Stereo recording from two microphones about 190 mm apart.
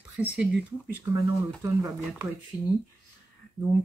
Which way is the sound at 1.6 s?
15° right (ahead or behind).